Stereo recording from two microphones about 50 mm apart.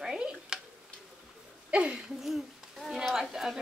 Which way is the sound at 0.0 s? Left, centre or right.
Centre.